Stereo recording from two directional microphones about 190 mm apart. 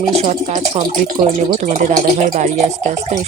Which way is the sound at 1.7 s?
45° right (ahead or behind).